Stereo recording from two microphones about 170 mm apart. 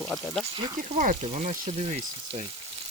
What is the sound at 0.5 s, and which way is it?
Speech, 25° right (ahead or behind).